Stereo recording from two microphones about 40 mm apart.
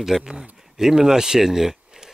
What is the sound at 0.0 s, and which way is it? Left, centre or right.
Speech, centre.